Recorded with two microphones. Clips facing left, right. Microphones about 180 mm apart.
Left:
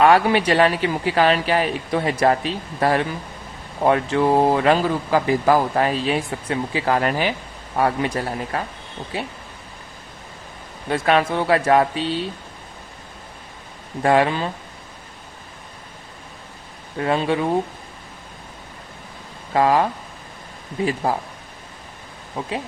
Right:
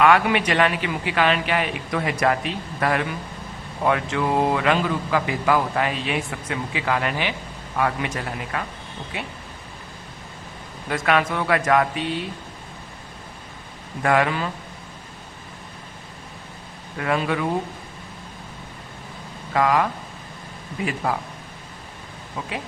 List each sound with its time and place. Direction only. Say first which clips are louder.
0.0 s a man's voice: left 3 dB; 35° left (ahead or behind)
10.8 s a man's voice: left 3 dB; 30° left (ahead or behind)
14.0 s a man's voice: left 3 dB; 30° left (ahead or behind)
17.0 s a man's voice: left 3 dB; 30° left (ahead or behind)
19.5 s a man's voice: left 3 dB; 30° left (ahead or behind)
22.4 s a man's voice: left 4 dB; 30° left (ahead or behind)